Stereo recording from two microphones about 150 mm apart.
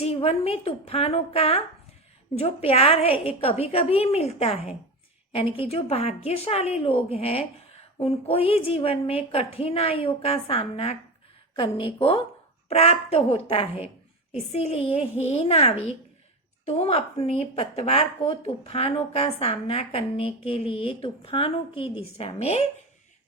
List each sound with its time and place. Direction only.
0.0 s a woman's voice: 40° left (ahead or behind)